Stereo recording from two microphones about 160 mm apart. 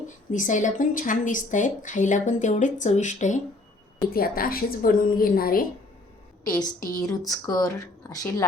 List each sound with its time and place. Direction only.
0.3 s a woman's voice: 50° left (ahead or behind)
4.1 s a woman's voice: 65° left (ahead or behind)
6.7 s a woman's voice: 60° left (ahead or behind)
7.3 s speech: 20° left (ahead or behind)